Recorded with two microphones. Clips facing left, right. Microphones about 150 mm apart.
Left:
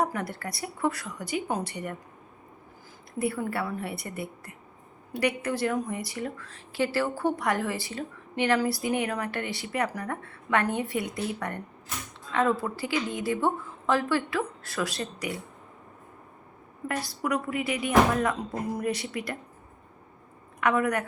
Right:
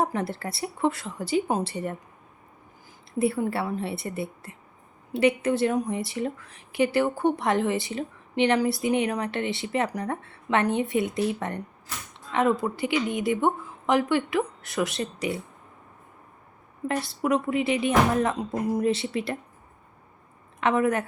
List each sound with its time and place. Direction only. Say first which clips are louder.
0.0 s speech: right 2 dB; 25° right (ahead or behind)
3.2 s speech: right 4 dB; 25° right (ahead or behind)
16.9 s speech: right 4 dB; 25° right (ahead or behind)
20.6 s a woman's voice: right 2 dB; 25° right (ahead or behind)